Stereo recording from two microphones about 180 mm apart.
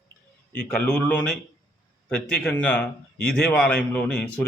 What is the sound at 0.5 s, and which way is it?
A man's voice, 10° left (ahead or behind).